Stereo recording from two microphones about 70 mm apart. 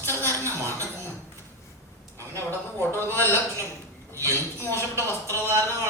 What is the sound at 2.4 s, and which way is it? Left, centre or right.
Speech, left.